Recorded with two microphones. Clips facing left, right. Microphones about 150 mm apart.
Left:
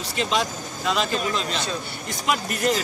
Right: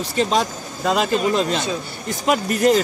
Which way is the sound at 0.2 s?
40° right (ahead or behind).